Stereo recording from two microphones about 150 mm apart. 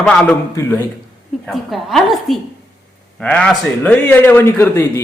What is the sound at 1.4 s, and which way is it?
A woman's voice, centre (ahead or behind).